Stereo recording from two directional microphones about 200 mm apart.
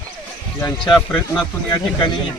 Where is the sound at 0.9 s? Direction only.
Centre (ahead or behind).